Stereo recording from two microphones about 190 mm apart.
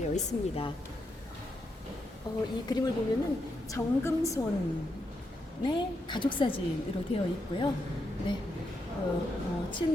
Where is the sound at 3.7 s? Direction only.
15° left (ahead or behind).